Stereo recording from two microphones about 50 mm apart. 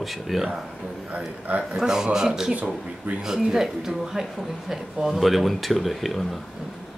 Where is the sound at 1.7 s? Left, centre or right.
Centre.